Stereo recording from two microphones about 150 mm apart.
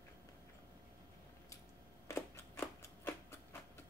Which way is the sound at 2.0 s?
15° left (ahead or behind).